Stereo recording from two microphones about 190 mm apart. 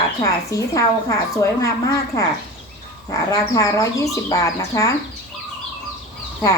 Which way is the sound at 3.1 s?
15° left (ahead or behind).